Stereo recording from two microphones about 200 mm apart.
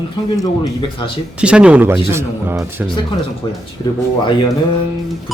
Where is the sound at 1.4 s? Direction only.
5° right (ahead or behind).